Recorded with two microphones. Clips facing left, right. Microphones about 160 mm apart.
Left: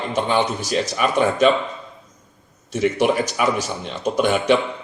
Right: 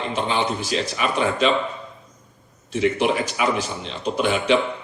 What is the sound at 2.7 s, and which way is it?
A man's voice, 45° left (ahead or behind).